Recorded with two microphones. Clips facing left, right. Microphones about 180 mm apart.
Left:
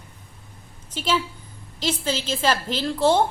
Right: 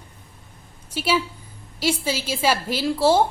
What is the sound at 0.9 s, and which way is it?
A man's voice, 10° right (ahead or behind).